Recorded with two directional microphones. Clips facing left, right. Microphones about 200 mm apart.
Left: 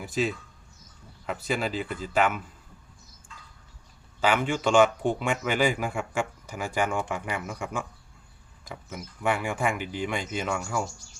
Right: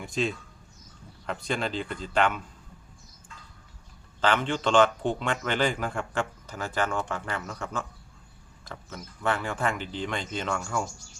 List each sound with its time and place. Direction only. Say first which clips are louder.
0.0 s speech: left 1 dB; 5° left (ahead or behind)
4.2 s speech: left 1 dB; 10° left (ahead or behind)